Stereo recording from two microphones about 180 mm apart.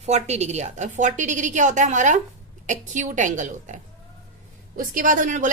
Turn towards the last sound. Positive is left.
turn(degrees=-45)  # may be behind; listen again after turning